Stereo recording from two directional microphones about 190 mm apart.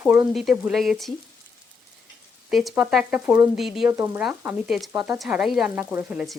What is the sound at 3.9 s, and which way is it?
Frying, 15° right (ahead or behind).